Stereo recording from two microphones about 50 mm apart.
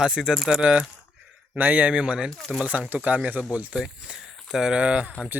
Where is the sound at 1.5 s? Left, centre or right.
Right.